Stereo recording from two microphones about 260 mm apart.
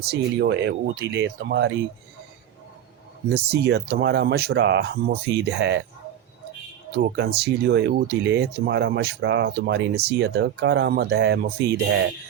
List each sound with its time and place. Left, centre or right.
0.0 s speech: right
3.3 s speech: right
7.0 s speech: right